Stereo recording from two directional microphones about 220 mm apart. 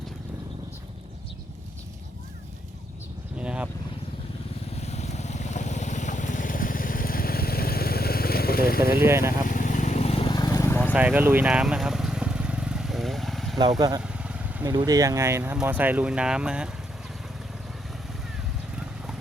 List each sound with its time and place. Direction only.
3.3 s vehicle: 5° right (ahead or behind)
4.8 s boat: 30° left (ahead or behind)
9.0 s speech: 10° right (ahead or behind)
9.5 s vehicle: 35° left (ahead or behind); by 10.9 s 10° left (ahead or behind)
10.9 s vehicle: 5° right (ahead or behind)
13.6 s speech: 20° right (ahead or behind)
14.0 s vehicle: 5° right (ahead or behind)
14.7 s speech: 20° right (ahead or behind)